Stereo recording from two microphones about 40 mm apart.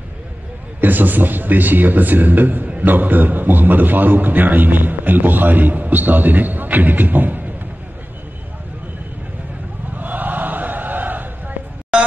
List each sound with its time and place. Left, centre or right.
0.7 s a man's voice: right
9.9 s chant: right
11.9 s a sound: centre